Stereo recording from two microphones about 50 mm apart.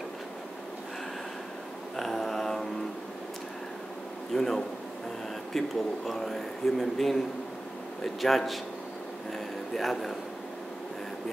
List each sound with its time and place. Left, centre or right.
2.0 s mantra: centre
4.3 s a man's voice: centre
9.8 s speech: centre